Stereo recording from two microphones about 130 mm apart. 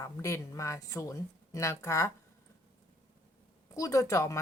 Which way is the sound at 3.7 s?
25° left (ahead or behind).